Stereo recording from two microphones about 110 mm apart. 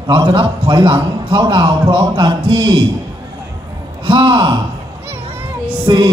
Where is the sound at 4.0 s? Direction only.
50° right (ahead or behind).